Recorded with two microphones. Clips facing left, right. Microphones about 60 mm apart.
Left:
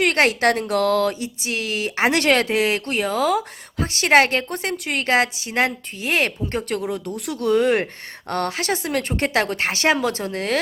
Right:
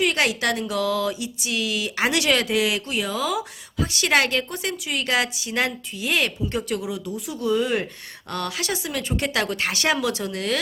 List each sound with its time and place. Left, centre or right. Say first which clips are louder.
0.0 s a woman's voice: left 4 dB; left
1.4 s a woman's voice: left 1 dB; left